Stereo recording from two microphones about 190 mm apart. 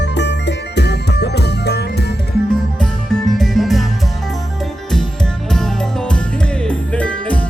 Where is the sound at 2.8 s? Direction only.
Centre (ahead or behind).